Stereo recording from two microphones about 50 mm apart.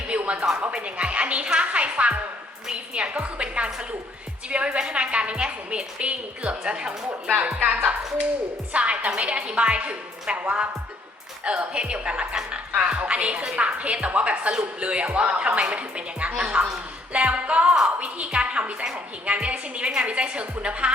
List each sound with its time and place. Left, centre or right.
0.1 s music: right
0.7 s a woman's voice: right
8.7 s a woman's voice: right